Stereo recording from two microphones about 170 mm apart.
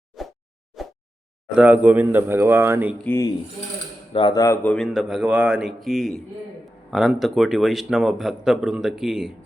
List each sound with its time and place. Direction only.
1.5 s speech: 10° right (ahead or behind)
3.0 s speech: 10° left (ahead or behind)
4.1 s speech: 25° left (ahead or behind); by 4.9 s 5° left (ahead or behind)
4.9 s a man's voice: 5° right (ahead or behind)